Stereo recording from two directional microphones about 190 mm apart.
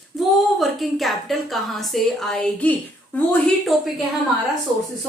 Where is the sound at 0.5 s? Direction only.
Centre (ahead or behind).